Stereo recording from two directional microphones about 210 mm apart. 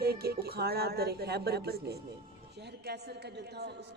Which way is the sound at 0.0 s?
50° right (ahead or behind).